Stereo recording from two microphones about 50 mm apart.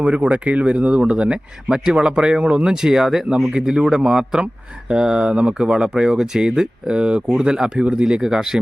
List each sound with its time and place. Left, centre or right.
0.0 s speech: right